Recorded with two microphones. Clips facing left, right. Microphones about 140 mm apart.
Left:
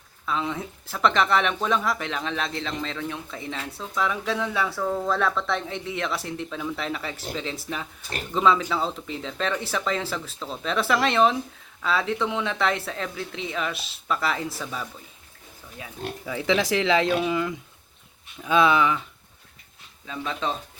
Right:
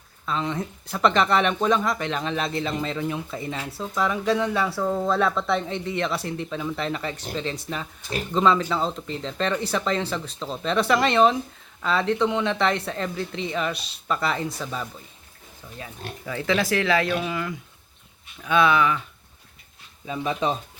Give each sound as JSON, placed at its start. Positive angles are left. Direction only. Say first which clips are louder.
{"t": 0.3, "sound": "speech", "louder": "right 1 dB", "side_deg": 5}
{"t": 20.1, "sound": "speech", "louder": "right 4 dB", "side_deg": -15}